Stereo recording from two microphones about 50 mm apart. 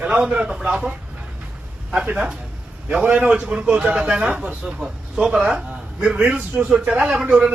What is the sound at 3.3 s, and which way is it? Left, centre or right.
A man's voice, right.